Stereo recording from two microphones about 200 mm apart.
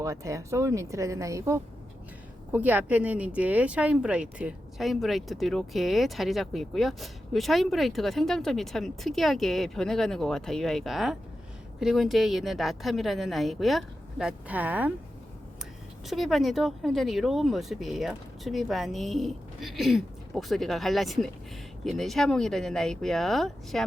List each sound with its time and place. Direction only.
0.0 s speech: 15° right (ahead or behind)
16.0 s speech: centre (ahead or behind)